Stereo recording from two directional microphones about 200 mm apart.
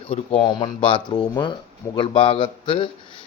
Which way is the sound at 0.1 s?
25° left (ahead or behind).